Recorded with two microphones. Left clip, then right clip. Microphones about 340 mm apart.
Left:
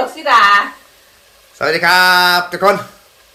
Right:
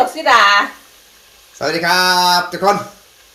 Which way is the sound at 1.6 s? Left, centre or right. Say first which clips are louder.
Left 4 dB; centre.